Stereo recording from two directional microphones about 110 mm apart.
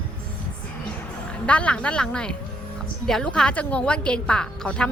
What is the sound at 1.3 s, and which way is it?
A woman's voice, 10° left (ahead or behind).